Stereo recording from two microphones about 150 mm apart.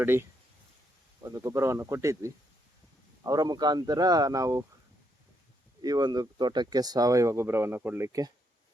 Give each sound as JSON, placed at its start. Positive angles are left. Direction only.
{"t": 0.0, "sound": "speech", "side_deg": -15}
{"t": 5.8, "sound": "speech", "side_deg": -25}